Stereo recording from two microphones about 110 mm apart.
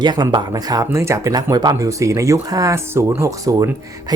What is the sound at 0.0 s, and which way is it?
Speech, 45° right (ahead or behind).